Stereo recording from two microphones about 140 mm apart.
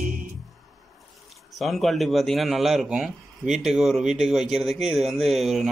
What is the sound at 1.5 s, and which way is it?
A man's voice, centre (ahead or behind).